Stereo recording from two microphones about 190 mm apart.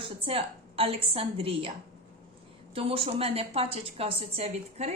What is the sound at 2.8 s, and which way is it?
A woman's voice, 30° right (ahead or behind).